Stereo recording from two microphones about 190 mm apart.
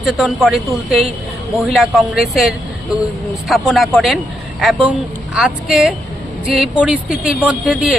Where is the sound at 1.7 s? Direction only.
Centre (ahead or behind).